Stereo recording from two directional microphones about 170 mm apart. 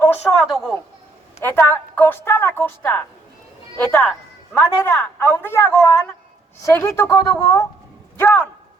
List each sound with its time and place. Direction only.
0.4 s a woman's voice: centre (ahead or behind)
1.4 s a woman's voice: 15° left (ahead or behind)